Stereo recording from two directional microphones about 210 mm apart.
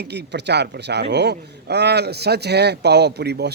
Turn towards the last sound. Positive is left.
turn(degrees=-50)  # may be behind; listen again after turning